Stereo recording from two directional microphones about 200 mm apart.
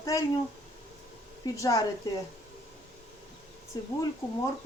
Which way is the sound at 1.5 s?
15° left (ahead or behind).